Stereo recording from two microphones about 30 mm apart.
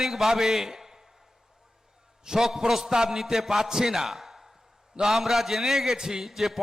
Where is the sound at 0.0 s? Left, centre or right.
Centre.